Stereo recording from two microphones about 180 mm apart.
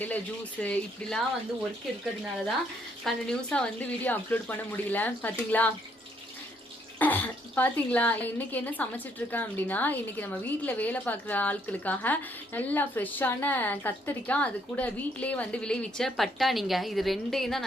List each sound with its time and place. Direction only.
0.6 s a woman's voice: 5° left (ahead or behind)
3.0 s a woman's voice: 5° left (ahead or behind)
7.0 s a woman's voice: 10° left (ahead or behind)